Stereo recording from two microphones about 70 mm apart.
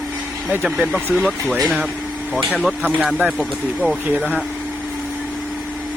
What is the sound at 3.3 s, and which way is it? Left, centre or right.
Speech, centre.